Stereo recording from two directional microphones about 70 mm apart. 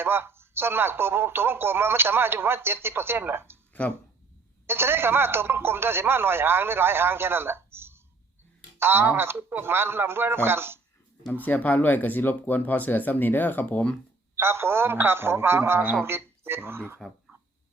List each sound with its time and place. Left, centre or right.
0.0 s speech: right
4.6 s speech: right
11.4 s speech: left
14.3 s speech: right